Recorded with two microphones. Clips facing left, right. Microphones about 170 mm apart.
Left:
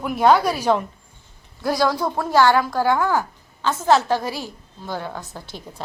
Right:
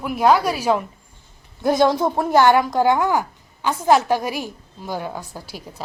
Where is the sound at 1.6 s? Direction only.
20° right (ahead or behind).